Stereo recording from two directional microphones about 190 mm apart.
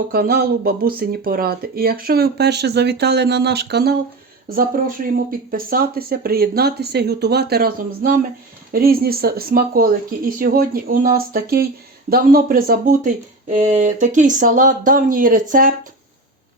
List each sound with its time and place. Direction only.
0.1 s speech: 55° right (ahead or behind)
4.4 s speech: 50° right (ahead or behind)
13.6 s speech: 40° right (ahead or behind)